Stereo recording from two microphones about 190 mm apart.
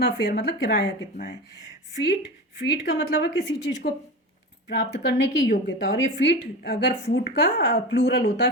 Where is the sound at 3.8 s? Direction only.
55° left (ahead or behind).